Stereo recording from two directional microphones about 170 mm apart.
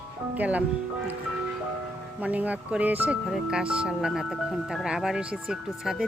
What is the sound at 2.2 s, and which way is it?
Speech, 10° right (ahead or behind).